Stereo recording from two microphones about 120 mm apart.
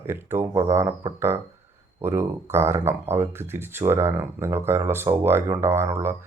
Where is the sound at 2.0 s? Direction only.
20° right (ahead or behind).